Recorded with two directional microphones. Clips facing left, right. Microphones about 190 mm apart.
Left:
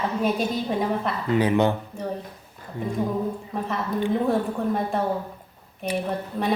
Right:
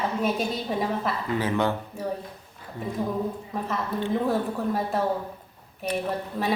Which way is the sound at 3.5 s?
Centre (ahead or behind).